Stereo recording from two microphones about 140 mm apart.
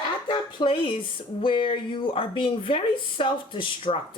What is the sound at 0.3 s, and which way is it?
Speech, 35° left (ahead or behind).